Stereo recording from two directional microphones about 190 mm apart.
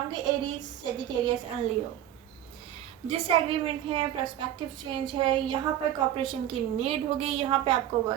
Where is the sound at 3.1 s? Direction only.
30° right (ahead or behind).